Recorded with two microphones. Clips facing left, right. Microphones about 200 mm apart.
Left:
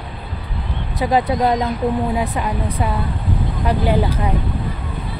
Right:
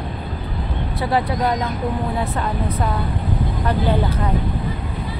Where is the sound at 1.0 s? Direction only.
20° left (ahead or behind).